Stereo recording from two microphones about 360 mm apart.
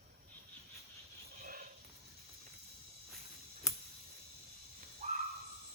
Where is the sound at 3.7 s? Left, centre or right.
Centre.